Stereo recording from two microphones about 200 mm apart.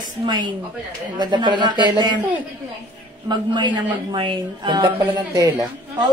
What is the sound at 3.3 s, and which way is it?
A woman's voice, 20° right (ahead or behind).